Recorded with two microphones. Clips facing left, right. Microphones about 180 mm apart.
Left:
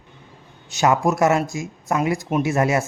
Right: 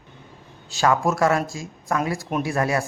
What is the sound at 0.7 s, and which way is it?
A man's voice, 20° left (ahead or behind).